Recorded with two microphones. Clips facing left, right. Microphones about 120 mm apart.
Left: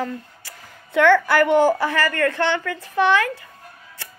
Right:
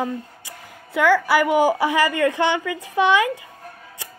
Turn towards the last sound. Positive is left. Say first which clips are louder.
# right 1 dB
turn(degrees=-15)  # may be behind; listen again after turning